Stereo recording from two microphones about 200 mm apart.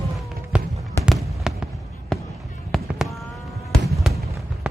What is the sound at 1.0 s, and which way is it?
Fireworks, centre (ahead or behind).